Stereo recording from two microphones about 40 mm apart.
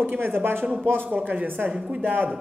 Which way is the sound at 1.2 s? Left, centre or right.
Right.